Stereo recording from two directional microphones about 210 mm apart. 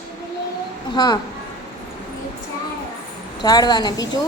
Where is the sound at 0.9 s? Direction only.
20° left (ahead or behind).